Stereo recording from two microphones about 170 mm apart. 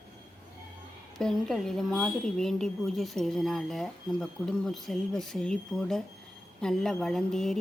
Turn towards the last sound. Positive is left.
turn(degrees=0)  # may be behind; listen again after turning